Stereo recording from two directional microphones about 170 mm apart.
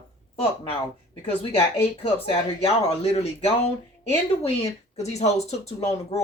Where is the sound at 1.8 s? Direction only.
35° left (ahead or behind).